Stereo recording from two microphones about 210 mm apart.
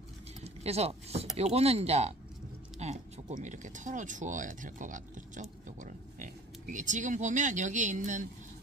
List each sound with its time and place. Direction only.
0.4 s speech: 30° right (ahead or behind)